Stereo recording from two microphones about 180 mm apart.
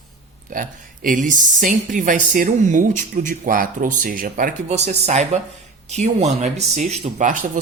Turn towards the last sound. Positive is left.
turn(degrees=-45)  # may be behind; listen again after turning